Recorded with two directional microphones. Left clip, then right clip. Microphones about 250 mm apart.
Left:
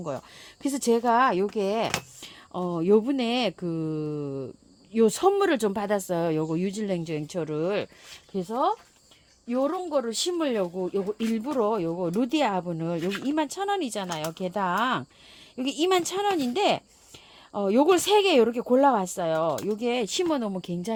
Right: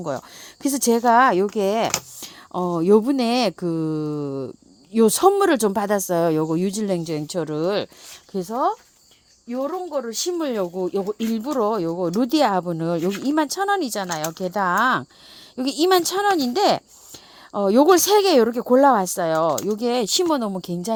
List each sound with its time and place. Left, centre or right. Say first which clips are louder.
0.0 s speech: right 6 dB; right
9.5 s speech: right 1 dB; right